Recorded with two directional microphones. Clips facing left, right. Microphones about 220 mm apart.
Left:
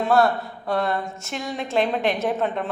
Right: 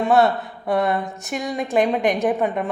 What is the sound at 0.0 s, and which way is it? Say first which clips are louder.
A woman's voice: right 2 dB; 20° right (ahead or behind).